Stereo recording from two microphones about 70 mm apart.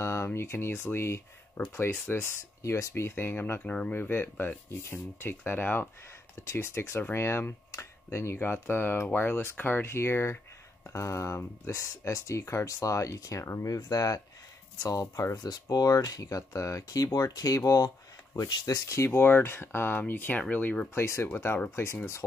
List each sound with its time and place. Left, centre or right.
0.0 s speech: left
3.6 s speech: left
6.5 s speech: left
15.3 s speech: left
18.9 s speech: left
20.9 s speech: left